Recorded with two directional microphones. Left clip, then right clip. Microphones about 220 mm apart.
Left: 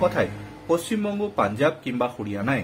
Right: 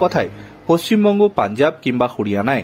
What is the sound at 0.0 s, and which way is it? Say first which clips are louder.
Speech: right 5 dB; 40° right (ahead or behind).